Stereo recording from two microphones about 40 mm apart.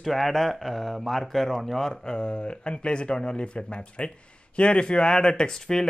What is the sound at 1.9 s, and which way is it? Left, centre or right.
Speech, centre.